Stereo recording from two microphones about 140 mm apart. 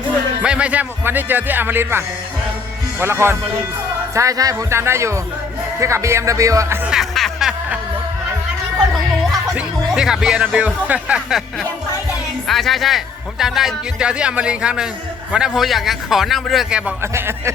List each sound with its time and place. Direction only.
0.4 s speech: 10° right (ahead or behind)
6.8 s snicker: centre (ahead or behind)
8.9 s speech: 5° right (ahead or behind)
12.5 s speech: centre (ahead or behind)
17.0 s speech: 20° right (ahead or behind)